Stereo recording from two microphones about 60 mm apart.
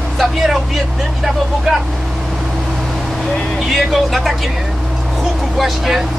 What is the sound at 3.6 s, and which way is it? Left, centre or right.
Vehicle, centre.